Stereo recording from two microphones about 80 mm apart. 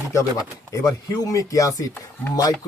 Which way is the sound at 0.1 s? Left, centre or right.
Left.